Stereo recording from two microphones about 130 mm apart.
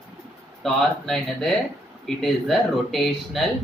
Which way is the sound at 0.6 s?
5° left (ahead or behind).